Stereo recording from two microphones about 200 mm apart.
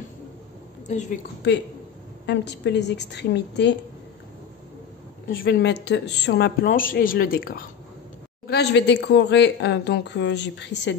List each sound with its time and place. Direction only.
0.8 s a woman's voice: 35° left (ahead or behind)
2.2 s speech: 60° left (ahead or behind)
5.3 s a woman's voice: 50° left (ahead or behind)